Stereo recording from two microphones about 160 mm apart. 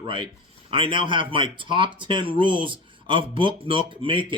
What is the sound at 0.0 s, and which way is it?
Speech, 35° right (ahead or behind).